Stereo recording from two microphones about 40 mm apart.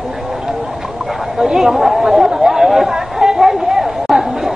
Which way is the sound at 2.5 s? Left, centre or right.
Centre.